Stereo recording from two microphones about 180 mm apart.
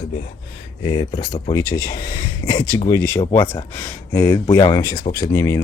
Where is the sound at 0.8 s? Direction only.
25° left (ahead or behind).